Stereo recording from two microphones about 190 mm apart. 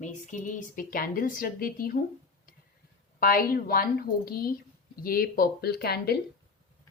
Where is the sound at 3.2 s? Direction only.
50° left (ahead or behind).